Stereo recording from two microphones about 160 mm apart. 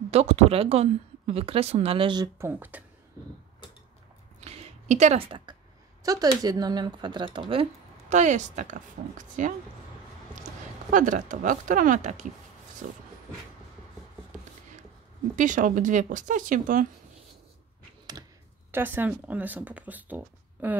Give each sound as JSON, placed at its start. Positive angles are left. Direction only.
{"t": 0.1, "sound": "speech", "side_deg": -40}
{"t": 4.4, "sound": "a sound", "side_deg": -40}
{"t": 5.5, "sound": "a sound", "side_deg": -30}
{"t": 6.0, "sound": "speech", "side_deg": -25}
{"t": 8.1, "sound": "speech", "side_deg": -50}
{"t": 15.3, "sound": "speech", "side_deg": -50}
{"t": 18.7, "sound": "speech", "side_deg": -10}